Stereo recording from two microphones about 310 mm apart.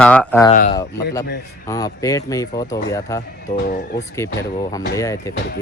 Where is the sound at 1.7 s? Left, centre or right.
Centre.